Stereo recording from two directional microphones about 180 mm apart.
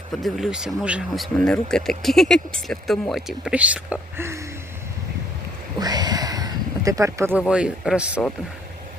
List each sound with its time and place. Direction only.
0.2 s speech: centre (ahead or behind)
4.2 s a sound: 15° right (ahead or behind)
5.8 s speech: 20° right (ahead or behind); by 8.2 s 5° right (ahead or behind)